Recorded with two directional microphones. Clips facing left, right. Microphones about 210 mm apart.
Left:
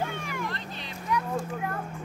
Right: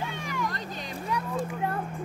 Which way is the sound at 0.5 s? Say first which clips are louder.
Right 2 dB; 45° right (ahead or behind).